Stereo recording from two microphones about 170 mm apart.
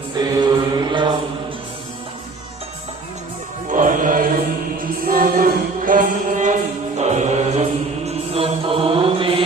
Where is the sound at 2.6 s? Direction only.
40° right (ahead or behind).